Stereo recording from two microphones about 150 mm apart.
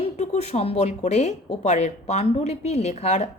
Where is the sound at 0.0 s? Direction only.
45° left (ahead or behind).